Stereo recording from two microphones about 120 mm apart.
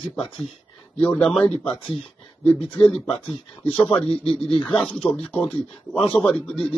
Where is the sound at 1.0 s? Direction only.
10° left (ahead or behind).